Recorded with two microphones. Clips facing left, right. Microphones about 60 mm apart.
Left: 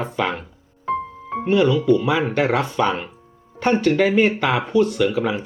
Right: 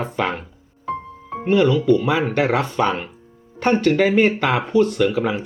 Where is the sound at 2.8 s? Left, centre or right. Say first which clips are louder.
Even; centre.